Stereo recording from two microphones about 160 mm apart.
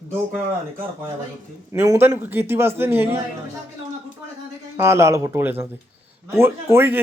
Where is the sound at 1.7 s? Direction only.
15° right (ahead or behind).